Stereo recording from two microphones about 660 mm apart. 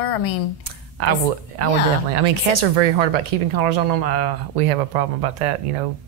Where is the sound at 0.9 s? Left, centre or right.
Right.